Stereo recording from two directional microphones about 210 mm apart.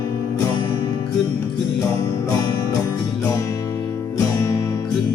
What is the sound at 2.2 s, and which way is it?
Music, 15° left (ahead or behind).